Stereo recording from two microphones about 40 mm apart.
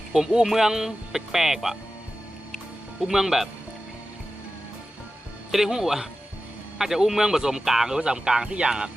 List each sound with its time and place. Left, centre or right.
0.1 s speech: centre
3.0 s speech: centre
5.5 s speech: centre
7.9 s speech: centre